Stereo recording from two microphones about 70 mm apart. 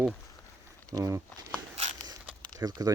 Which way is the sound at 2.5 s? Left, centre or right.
Right.